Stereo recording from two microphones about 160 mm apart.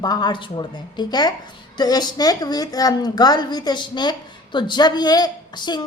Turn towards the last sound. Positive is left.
turn(degrees=25)  # may be behind; listen again after turning